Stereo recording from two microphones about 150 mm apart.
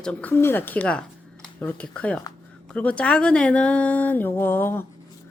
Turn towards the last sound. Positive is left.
turn(degrees=15)  # may be behind; listen again after turning